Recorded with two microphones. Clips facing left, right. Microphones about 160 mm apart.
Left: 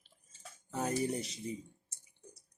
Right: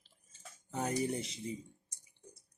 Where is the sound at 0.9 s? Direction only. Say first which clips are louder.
Even; 25° right (ahead or behind).